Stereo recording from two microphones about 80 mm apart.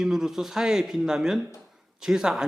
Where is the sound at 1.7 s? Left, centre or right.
Centre.